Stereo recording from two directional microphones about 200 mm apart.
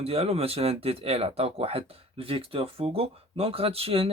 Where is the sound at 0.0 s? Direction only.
30° right (ahead or behind).